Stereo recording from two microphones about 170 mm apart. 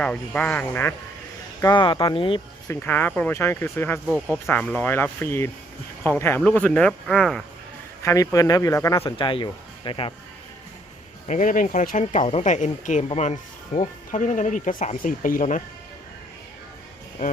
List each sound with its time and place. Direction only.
0.0 s speech: 5° left (ahead or behind)
1.6 s speech: 30° left (ahead or behind)
2.6 s speech: 10° left (ahead or behind)
4.0 s speech: 5° right (ahead or behind)
4.4 s speech: 5° left (ahead or behind)
8.0 s speech: 20° left (ahead or behind)
11.3 s speech: 50° left (ahead or behind)